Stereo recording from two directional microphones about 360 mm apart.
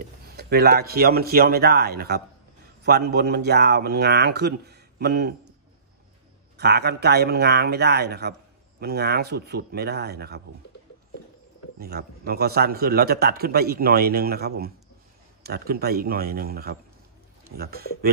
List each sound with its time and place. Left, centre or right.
0.4 s a man's voice: right
6.5 s a man's voice: right
11.8 s a man's voice: right